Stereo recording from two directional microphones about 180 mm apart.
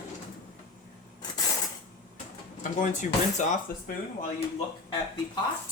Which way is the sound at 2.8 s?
45° left (ahead or behind).